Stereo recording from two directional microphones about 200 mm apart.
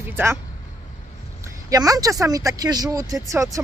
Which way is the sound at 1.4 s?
15° right (ahead or behind).